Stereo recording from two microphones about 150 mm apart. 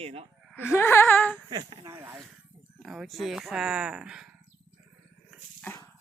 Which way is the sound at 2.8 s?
Centre (ahead or behind).